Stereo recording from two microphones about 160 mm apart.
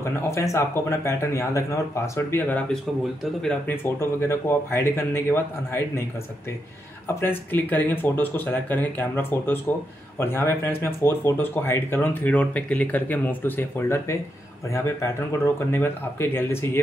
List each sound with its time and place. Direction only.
0.0 s speech: 20° left (ahead or behind)
7.1 s speech: 15° left (ahead or behind)
15.7 s speech: 15° left (ahead or behind)